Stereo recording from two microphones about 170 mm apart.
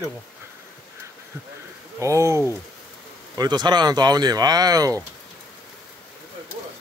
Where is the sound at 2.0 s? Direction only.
15° right (ahead or behind).